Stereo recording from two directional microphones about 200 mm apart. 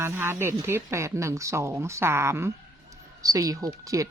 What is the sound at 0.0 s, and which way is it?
Speech, 10° right (ahead or behind).